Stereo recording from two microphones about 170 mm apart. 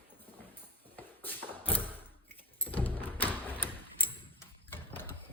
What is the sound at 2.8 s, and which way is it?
Music, 10° left (ahead or behind).